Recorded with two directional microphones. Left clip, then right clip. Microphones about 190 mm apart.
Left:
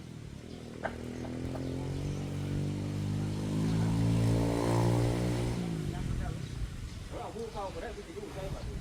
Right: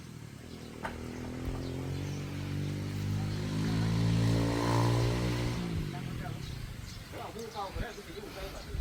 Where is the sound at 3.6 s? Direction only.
70° left (ahead or behind).